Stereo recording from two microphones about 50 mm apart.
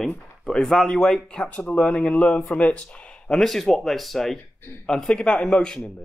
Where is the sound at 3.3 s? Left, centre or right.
Centre.